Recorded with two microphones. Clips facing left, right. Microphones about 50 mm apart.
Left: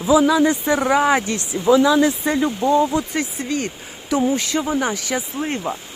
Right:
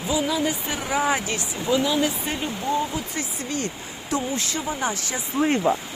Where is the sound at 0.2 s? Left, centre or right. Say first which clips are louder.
Left 8 dB; left.